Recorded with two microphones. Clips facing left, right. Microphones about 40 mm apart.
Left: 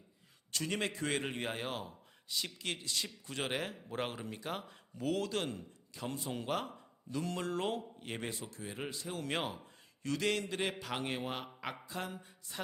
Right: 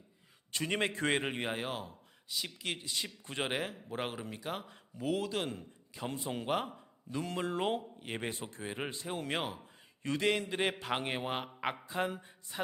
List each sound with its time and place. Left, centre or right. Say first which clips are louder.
0.5 s a man's voice: right 3 dB; right
1.4 s a man's voice: right 2 dB; centre
3.5 s speech: right 2 dB; centre
8.3 s speech: right 3 dB; right
9.2 s speech: even; centre
10.0 s a man's voice: right 3 dB; right